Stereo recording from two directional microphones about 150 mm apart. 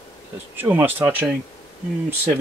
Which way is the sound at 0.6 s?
15° right (ahead or behind).